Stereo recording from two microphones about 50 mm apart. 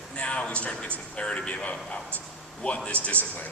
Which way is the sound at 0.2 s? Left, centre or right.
Left.